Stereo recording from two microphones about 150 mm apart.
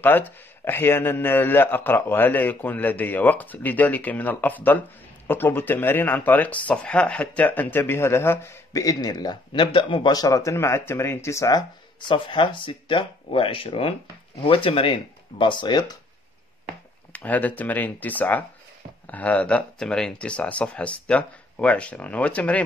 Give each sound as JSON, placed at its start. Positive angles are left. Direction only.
{"t": 0.0, "sound": "a man's voice", "side_deg": 15}
{"t": 12.1, "sound": "speech", "side_deg": 35}
{"t": 17.1, "sound": "a man's voice", "side_deg": 10}